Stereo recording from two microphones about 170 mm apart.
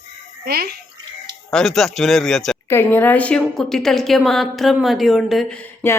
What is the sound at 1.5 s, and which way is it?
A woman's voice, centre (ahead or behind).